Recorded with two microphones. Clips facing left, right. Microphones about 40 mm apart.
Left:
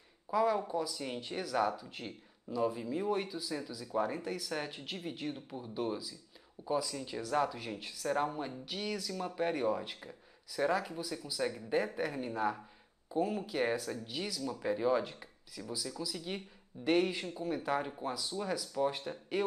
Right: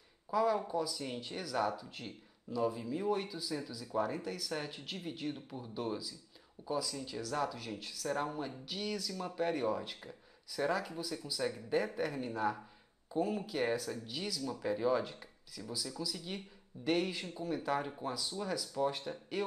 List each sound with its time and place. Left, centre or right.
0.3 s speech: centre
14.4 s speech: left
14.7 s speech: centre